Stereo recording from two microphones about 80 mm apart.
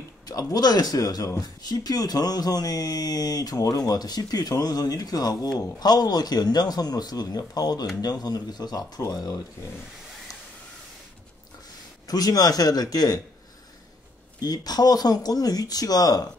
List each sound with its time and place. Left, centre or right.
0.2 s speech: left
12.1 s speech: left
14.4 s speech: left